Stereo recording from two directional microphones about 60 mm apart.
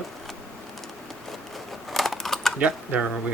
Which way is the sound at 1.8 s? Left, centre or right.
Centre.